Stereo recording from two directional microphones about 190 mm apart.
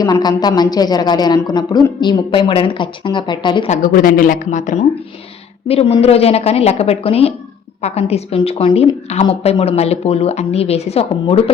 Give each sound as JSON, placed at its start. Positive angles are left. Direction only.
{"t": 0.0, "sound": "a woman's voice", "side_deg": 20}
{"t": 3.7, "sound": "a woman's voice", "side_deg": 45}